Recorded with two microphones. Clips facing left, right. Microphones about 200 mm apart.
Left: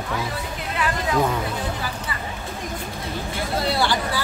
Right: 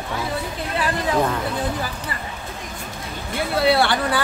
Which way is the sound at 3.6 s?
60° right (ahead or behind).